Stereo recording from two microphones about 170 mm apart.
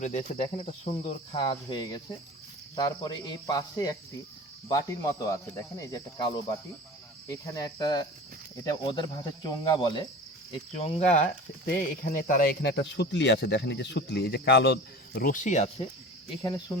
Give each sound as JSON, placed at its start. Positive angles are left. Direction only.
{"t": 0.0, "sound": "speech", "side_deg": 45}
{"t": 10.8, "sound": "speech", "side_deg": 40}
{"t": 11.6, "sound": "speech", "side_deg": 55}
{"t": 16.4, "sound": "speech", "side_deg": 20}